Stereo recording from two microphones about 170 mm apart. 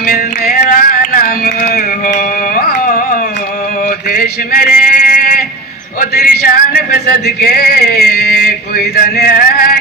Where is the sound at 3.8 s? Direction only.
60° left (ahead or behind).